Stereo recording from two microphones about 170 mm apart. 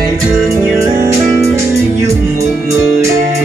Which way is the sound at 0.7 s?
15° right (ahead or behind).